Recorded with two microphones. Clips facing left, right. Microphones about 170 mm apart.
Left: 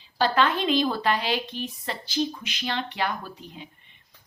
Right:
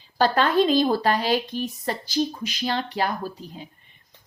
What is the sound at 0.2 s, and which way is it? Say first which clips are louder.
Speech: right 4 dB; 40° right (ahead or behind).